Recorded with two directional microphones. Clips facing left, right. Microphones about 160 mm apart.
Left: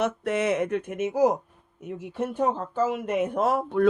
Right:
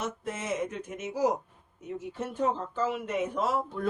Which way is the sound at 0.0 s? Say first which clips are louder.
Left 10 dB; 70° left (ahead or behind).